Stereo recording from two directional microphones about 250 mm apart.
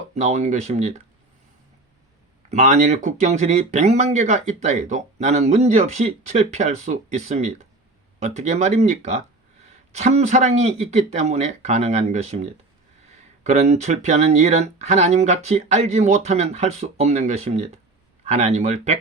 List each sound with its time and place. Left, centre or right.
0.1 s speech: right
2.5 s speech: right